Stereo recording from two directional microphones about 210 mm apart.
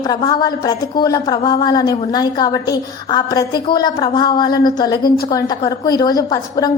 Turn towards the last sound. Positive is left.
turn(degrees=20)  # may be behind; listen again after turning